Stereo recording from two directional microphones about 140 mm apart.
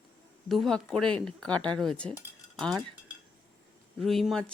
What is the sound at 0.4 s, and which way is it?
Speech, centre (ahead or behind).